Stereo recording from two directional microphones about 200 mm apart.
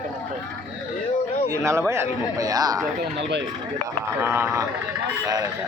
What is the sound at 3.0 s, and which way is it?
Speech, 60° right (ahead or behind).